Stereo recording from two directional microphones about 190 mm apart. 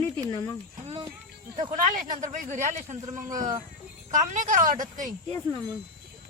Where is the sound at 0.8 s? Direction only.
30° right (ahead or behind).